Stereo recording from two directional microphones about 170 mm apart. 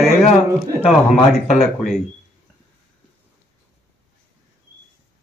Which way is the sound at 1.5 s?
Centre (ahead or behind).